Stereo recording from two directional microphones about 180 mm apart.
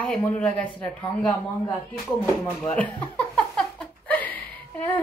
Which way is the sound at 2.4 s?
10° left (ahead or behind).